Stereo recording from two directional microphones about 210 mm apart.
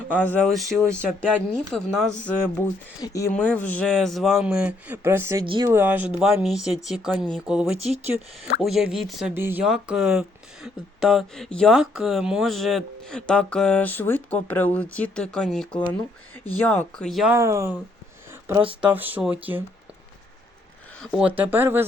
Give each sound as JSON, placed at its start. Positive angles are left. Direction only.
{"t": 0.1, "sound": "speech", "side_deg": 5}
{"t": 5.5, "sound": "speech", "side_deg": -20}
{"t": 5.7, "sound": "speech", "side_deg": -10}
{"t": 17.3, "sound": "speech", "side_deg": -15}
{"t": 18.3, "sound": "a sound", "side_deg": -10}
{"t": 18.8, "sound": "speech", "side_deg": -10}
{"t": 21.0, "sound": "speech", "side_deg": -5}